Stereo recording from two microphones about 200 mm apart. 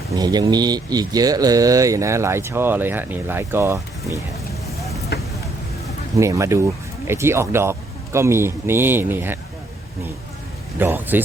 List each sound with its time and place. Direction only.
0.2 s speech: 20° right (ahead or behind)
5.1 s vehicle: 55° left (ahead or behind)
6.1 s speech: 15° right (ahead or behind)
10.8 s speech: 10° right (ahead or behind)